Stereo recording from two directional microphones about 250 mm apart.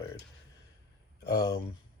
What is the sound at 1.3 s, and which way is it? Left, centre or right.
Speech, centre.